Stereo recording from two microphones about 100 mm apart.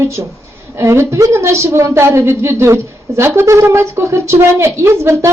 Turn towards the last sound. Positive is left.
turn(degrees=-25)  # may be behind; listen again after turning